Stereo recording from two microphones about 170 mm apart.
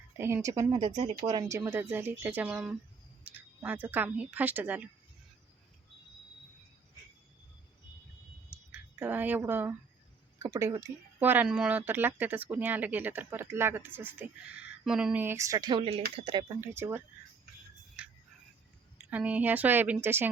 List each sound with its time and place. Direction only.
0.2 s speech: 15° right (ahead or behind)
8.4 s a sound: 10° right (ahead or behind)
10.4 s speech: 15° right (ahead or behind)
16.5 s speech: 15° right (ahead or behind)
18.0 s music: 10° right (ahead or behind)
18.9 s speech: 10° right (ahead or behind)